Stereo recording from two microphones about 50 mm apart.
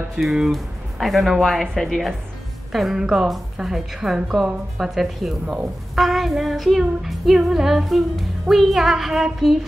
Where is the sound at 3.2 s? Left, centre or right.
Centre.